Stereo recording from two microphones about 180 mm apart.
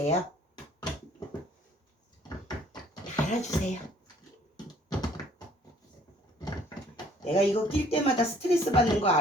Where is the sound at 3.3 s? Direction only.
40° left (ahead or behind).